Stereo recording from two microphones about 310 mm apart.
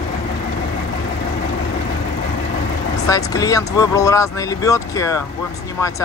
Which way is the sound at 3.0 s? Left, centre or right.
Centre.